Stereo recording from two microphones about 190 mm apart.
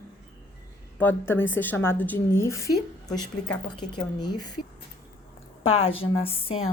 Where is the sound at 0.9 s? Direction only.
10° left (ahead or behind).